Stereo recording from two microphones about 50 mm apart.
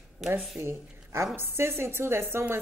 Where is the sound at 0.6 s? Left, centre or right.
Right.